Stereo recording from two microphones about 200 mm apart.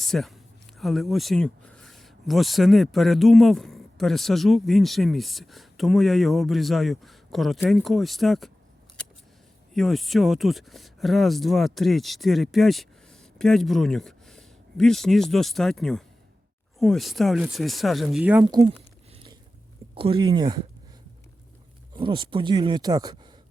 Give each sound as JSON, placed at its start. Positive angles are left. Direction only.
{"t": 0.0, "sound": "speech", "side_deg": 0}
{"t": 9.7, "sound": "speech", "side_deg": 0}
{"t": 18.4, "sound": "speech", "side_deg": -25}
{"t": 19.1, "sound": "boat", "side_deg": -25}
{"t": 20.0, "sound": "speech", "side_deg": -25}
{"t": 21.9, "sound": "speech", "side_deg": -25}